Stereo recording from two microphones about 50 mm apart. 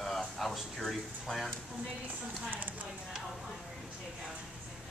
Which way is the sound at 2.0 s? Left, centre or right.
Right.